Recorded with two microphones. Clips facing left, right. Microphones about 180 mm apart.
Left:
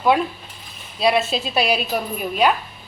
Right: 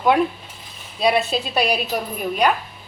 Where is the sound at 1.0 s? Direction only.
Centre (ahead or behind).